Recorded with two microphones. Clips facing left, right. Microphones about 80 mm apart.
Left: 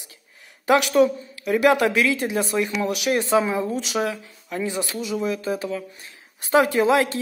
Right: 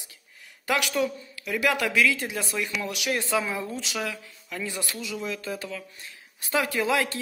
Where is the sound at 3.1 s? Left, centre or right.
Left.